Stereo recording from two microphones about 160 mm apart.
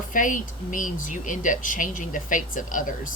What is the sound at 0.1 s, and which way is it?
Speech, 55° left (ahead or behind).